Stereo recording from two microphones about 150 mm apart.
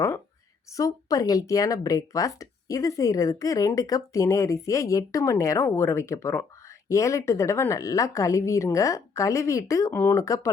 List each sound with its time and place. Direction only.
0.8 s speech: 25° left (ahead or behind)